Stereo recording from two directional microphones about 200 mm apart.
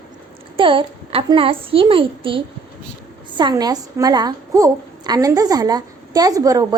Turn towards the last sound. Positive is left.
turn(degrees=-15)  # may be behind; listen again after turning